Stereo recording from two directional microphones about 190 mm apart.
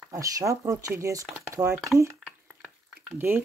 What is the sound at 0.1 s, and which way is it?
Speech, 15° right (ahead or behind).